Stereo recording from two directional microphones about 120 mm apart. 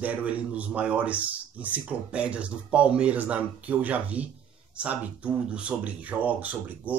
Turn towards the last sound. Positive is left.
turn(degrees=-15)  # may be behind; listen again after turning